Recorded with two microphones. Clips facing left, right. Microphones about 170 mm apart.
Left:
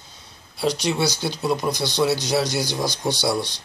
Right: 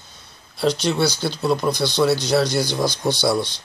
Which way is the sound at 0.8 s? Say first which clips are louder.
Right 2 dB; 15° left (ahead or behind).